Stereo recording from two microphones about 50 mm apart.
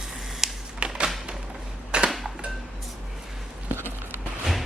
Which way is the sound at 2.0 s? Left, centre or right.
Centre.